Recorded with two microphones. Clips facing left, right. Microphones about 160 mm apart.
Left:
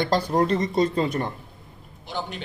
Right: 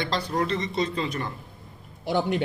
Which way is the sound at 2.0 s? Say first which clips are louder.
Right 8 dB; 60° right (ahead or behind).